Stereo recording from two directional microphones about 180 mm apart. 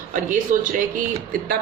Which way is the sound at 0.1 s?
50° right (ahead or behind).